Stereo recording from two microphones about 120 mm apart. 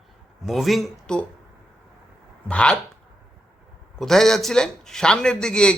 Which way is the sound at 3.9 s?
5° left (ahead or behind).